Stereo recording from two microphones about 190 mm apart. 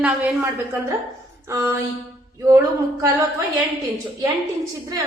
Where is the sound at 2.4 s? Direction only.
20° right (ahead or behind).